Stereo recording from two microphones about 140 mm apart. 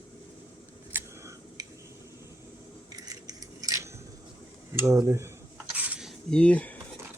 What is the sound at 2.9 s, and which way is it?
Scissors, 25° right (ahead or behind).